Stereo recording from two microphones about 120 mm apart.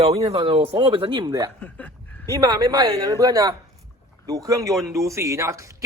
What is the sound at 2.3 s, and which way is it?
A man's voice, 30° right (ahead or behind).